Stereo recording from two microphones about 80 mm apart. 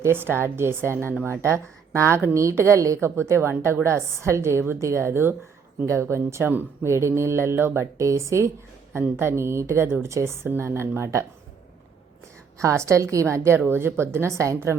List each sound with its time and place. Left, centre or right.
0.0 s a woman's voice: right
12.5 s a woman's voice: right